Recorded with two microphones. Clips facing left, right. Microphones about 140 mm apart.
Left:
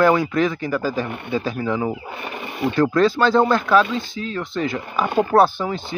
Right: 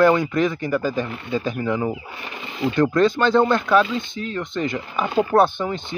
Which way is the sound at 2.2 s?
50° left (ahead or behind).